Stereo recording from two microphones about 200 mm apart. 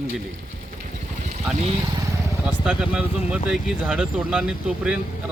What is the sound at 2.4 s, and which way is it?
Speech, 5° right (ahead or behind).